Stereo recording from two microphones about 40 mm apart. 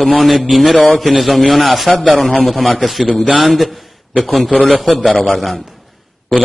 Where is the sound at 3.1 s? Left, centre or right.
Right.